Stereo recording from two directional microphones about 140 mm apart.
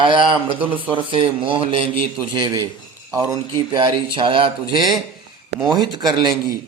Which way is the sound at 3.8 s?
35° right (ahead or behind).